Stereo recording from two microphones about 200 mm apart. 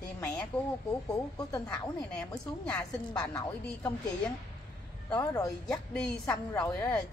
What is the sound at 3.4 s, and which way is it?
Speech, 10° left (ahead or behind).